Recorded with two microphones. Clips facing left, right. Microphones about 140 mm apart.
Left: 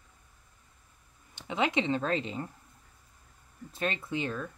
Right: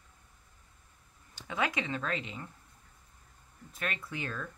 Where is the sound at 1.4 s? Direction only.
20° left (ahead or behind).